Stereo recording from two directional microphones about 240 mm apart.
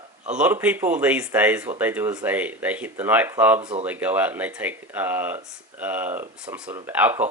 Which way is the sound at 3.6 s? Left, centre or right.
Right.